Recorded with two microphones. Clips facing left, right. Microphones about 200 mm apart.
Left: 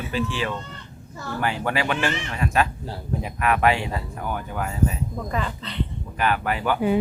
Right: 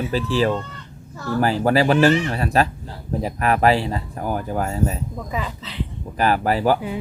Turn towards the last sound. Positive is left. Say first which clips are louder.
# right 5 dB
turn(degrees=-35)  # may be behind; listen again after turning